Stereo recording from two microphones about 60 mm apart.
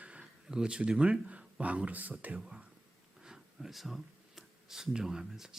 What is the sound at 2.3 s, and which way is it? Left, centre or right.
Speech, centre.